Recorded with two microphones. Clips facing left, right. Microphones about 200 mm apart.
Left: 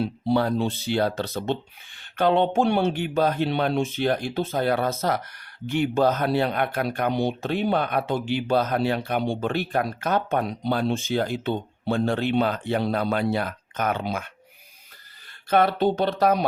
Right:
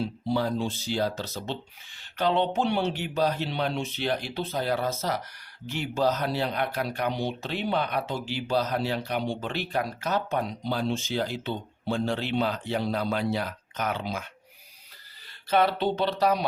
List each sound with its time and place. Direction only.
0.0 s speech: 65° left (ahead or behind)
15.4 s speech: 50° left (ahead or behind)